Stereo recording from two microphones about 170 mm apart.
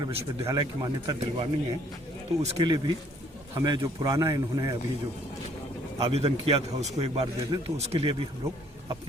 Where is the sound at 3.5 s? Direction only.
20° right (ahead or behind).